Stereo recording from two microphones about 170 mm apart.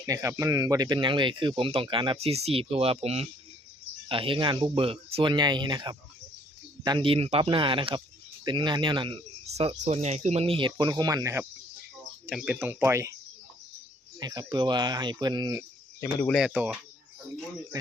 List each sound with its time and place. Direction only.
0.0 s speech: 20° right (ahead or behind)
12.2 s speech: 5° right (ahead or behind)
12.5 s speech: 15° right (ahead or behind)
14.2 s speech: 25° right (ahead or behind)
16.5 s speech: 10° right (ahead or behind)